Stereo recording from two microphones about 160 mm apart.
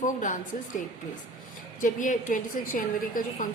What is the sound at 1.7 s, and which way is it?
A woman's voice, 55° left (ahead or behind).